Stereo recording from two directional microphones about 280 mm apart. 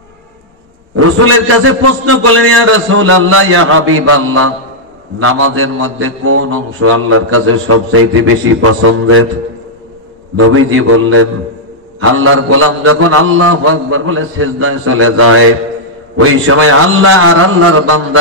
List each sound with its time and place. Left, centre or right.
0.9 s a man's voice: right
10.3 s a man's voice: right